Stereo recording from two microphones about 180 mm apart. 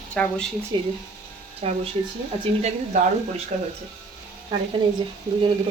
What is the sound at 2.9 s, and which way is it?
Speech, 40° right (ahead or behind).